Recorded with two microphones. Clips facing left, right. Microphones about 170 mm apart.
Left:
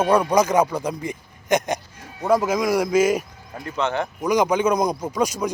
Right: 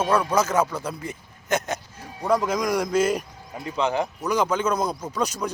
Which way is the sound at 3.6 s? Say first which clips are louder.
Even; 10° right (ahead or behind).